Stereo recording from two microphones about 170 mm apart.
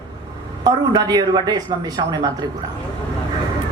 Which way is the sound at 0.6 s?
25° right (ahead or behind).